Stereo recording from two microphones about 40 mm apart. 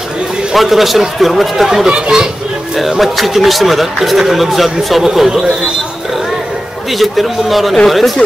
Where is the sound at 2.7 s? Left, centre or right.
Centre.